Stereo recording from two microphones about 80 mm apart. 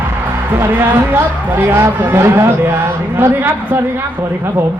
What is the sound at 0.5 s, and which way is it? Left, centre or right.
Speech, right.